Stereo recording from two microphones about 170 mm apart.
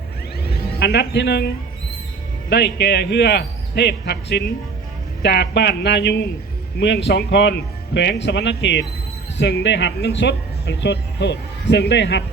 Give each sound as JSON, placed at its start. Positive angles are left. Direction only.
{"t": 0.8, "sound": "speech", "side_deg": 80}
{"t": 2.5, "sound": "a man's voice", "side_deg": 75}
{"t": 7.1, "sound": "speech", "side_deg": 80}